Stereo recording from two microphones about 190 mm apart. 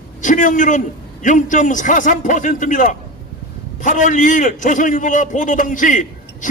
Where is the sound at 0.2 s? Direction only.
40° left (ahead or behind).